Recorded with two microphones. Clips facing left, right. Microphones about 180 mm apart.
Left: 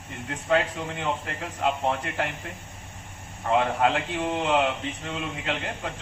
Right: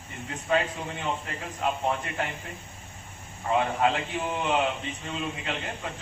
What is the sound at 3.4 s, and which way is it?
A man's voice, 65° left (ahead or behind).